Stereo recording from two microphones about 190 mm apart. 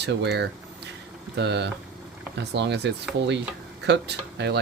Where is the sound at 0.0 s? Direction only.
65° right (ahead or behind).